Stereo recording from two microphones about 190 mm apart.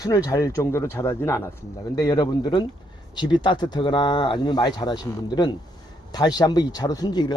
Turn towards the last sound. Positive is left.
turn(degrees=20)  # may be behind; listen again after turning